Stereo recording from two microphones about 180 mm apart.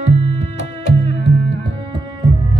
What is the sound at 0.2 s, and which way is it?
Music, 35° right (ahead or behind).